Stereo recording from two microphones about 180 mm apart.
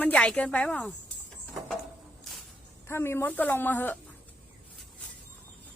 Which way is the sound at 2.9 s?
15° left (ahead or behind).